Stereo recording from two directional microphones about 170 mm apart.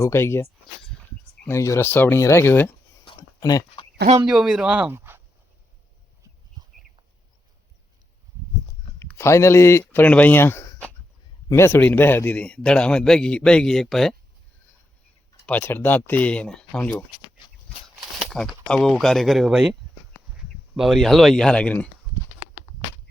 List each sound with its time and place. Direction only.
0.0 s speech: 15° left (ahead or behind)
1.5 s speech: 15° left (ahead or behind)
3.2 s a sound: 20° left (ahead or behind)
4.3 s speech: 5° right (ahead or behind)
9.0 s a man's voice: 15° left (ahead or behind)
15.4 s speech: 10° left (ahead or behind)
20.7 s a man's voice: centre (ahead or behind)